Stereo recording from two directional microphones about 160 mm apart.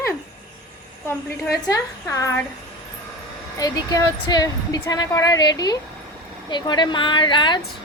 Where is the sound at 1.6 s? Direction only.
20° left (ahead or behind).